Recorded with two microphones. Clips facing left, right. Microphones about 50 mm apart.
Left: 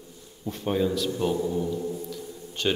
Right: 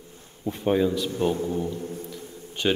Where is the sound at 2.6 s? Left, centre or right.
Centre.